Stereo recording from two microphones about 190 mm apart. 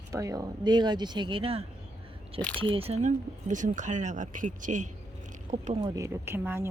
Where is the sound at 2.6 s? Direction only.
30° right (ahead or behind).